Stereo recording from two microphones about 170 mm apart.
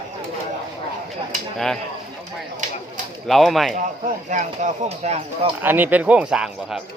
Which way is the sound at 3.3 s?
Centre (ahead or behind).